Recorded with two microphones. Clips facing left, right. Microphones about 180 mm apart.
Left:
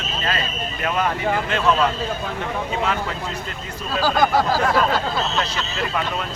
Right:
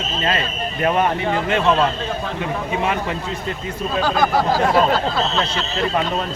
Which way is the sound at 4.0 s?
5° left (ahead or behind).